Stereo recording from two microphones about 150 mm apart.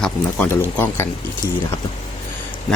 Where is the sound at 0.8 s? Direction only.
15° left (ahead or behind).